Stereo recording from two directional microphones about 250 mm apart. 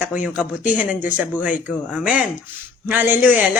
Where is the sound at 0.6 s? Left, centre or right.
Left.